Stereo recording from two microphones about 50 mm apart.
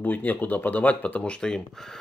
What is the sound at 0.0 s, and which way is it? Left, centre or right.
Speech, left.